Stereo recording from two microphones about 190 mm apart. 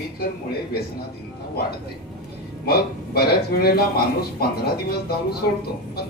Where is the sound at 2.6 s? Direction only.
55° left (ahead or behind).